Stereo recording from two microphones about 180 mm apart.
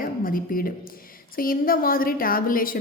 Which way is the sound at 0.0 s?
50° left (ahead or behind).